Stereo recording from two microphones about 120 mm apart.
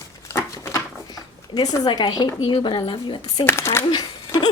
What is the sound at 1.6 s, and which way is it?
A woman's voice, 35° left (ahead or behind).